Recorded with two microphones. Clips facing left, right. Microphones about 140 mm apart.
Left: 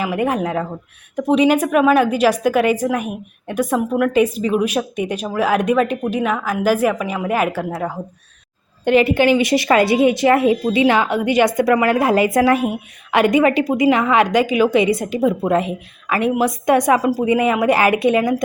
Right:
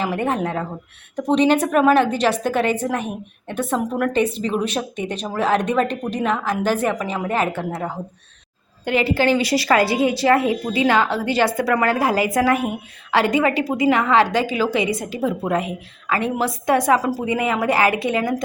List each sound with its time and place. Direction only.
0.0 s a woman's voice: 10° left (ahead or behind)
9.0 s a woman's voice: 15° left (ahead or behind)